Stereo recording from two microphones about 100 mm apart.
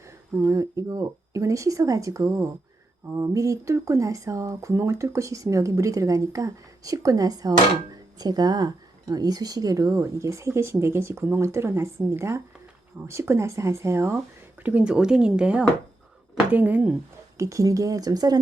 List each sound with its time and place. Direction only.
0.3 s speech: 30° right (ahead or behind)
14.6 s speech: 15° right (ahead or behind)
17.3 s speech: 30° right (ahead or behind)